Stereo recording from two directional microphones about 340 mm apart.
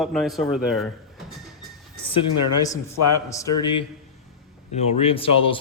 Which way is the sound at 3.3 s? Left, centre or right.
Centre.